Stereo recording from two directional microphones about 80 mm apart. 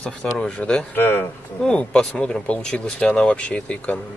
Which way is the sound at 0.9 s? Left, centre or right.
Left.